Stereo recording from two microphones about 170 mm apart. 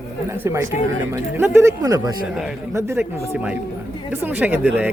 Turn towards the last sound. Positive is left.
turn(degrees=-10)  # may be behind; listen again after turning